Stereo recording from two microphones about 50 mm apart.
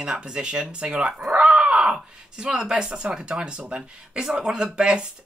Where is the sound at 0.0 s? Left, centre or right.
Centre.